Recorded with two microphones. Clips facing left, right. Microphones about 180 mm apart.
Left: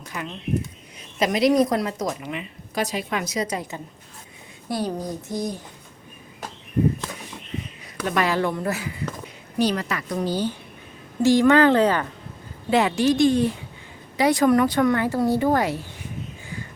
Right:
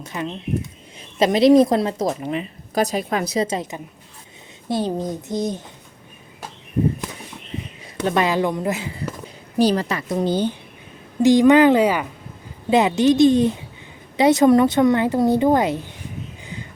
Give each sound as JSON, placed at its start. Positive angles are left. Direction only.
{"t": 0.0, "sound": "a woman's voice", "side_deg": -25}
{"t": 7.9, "sound": "a woman's voice", "side_deg": -25}
{"t": 9.2, "sound": "a woman's voice", "side_deg": -30}